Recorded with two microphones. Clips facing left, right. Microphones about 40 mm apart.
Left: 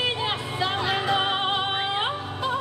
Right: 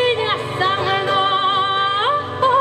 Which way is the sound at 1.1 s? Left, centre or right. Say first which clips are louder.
Right 8 dB; right.